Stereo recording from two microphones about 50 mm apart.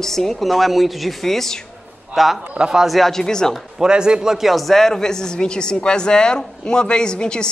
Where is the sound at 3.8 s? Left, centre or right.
Centre.